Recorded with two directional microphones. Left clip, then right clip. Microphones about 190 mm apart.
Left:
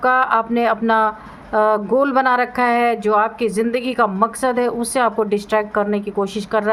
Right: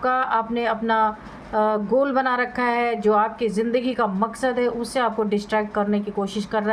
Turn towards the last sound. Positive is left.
turn(degrees=35)  # may be behind; listen again after turning